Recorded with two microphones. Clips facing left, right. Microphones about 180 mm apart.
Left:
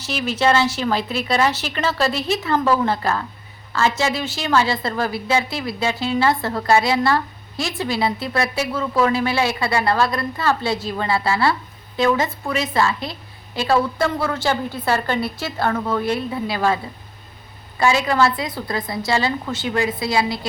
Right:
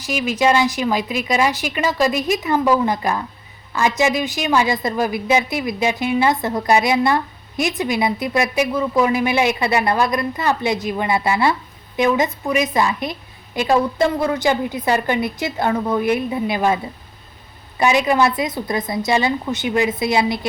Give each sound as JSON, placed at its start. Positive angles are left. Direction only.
{"t": 0.0, "sound": "a woman's voice", "side_deg": -10}